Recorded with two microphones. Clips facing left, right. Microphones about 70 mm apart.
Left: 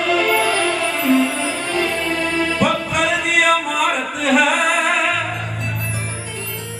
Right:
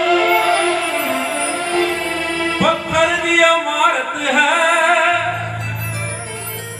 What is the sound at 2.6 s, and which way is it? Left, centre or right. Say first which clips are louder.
Music: right 2 dB; right.